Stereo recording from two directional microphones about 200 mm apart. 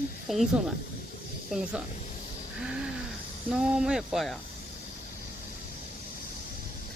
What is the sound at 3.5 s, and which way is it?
Speech, 5° right (ahead or behind).